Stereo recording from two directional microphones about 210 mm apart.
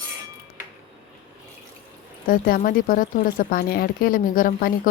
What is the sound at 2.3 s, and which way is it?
Speech, 40° left (ahead or behind).